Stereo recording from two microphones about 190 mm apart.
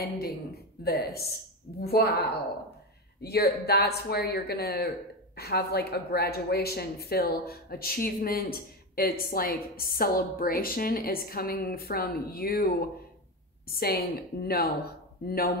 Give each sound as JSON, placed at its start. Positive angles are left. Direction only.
{"t": 0.8, "sound": "speech", "side_deg": 55}